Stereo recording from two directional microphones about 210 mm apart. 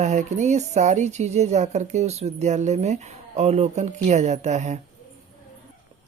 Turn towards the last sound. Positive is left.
turn(degrees=-35)  # may be behind; listen again after turning